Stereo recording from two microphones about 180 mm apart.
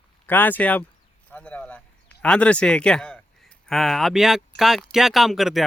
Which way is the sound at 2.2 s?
5° left (ahead or behind).